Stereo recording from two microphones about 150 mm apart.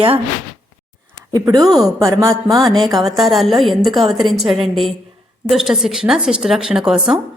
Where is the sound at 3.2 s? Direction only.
Centre (ahead or behind).